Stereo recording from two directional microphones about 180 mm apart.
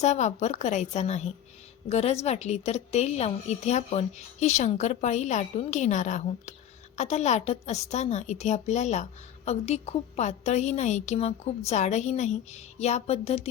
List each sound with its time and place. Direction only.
0.0 s a woman's voice: 40° left (ahead or behind)